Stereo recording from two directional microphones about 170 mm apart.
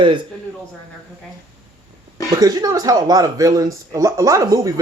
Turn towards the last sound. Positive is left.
turn(degrees=-20)  # may be behind; listen again after turning